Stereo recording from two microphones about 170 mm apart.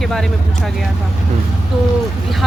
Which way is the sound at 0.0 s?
Centre (ahead or behind).